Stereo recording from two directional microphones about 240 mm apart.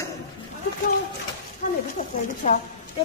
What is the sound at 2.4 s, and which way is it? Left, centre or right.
Speech, left.